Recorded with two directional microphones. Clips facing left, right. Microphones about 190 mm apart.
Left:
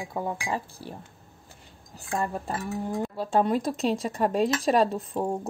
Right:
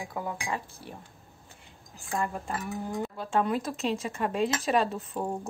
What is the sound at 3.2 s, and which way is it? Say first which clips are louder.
Speech: left 4 dB; 35° left (ahead or behind).